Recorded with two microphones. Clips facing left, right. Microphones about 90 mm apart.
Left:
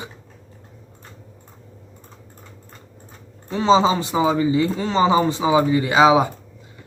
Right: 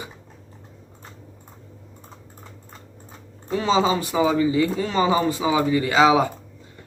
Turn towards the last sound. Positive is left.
turn(degrees=20)  # may be behind; listen again after turning